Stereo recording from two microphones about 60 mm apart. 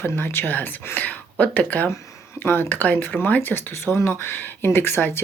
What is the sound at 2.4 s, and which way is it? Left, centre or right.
Speech, left.